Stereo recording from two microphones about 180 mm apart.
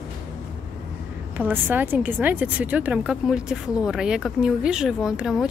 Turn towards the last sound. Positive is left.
turn(degrees=-5)  # may be behind; listen again after turning